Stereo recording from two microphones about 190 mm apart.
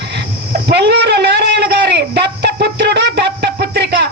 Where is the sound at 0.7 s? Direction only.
60° right (ahead or behind).